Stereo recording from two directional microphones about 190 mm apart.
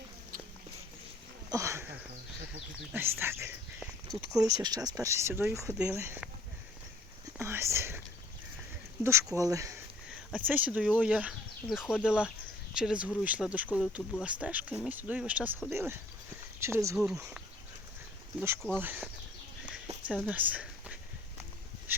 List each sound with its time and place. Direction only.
1.5 s a sound: 15° right (ahead or behind)
2.9 s speech: 10° right (ahead or behind)
7.3 s speech: 15° right (ahead or behind)
9.0 s speech: 15° right (ahead or behind)
18.3 s speech: 15° right (ahead or behind)
20.1 s a sound: 10° right (ahead or behind)